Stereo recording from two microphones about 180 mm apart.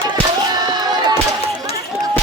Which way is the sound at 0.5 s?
20° right (ahead or behind).